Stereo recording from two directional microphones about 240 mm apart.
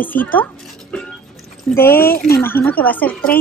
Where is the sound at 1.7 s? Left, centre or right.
Centre.